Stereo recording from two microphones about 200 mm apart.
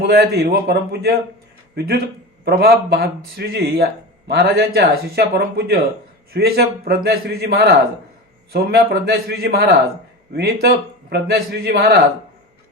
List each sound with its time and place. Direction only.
0.0 s speech: 50° right (ahead or behind)